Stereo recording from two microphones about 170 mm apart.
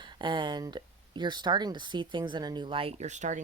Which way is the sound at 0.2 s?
30° right (ahead or behind).